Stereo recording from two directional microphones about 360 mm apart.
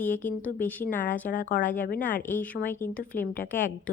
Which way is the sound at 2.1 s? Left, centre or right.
Centre.